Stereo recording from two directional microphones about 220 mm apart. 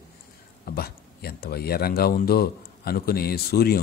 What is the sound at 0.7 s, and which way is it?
A man's voice, 45° left (ahead or behind).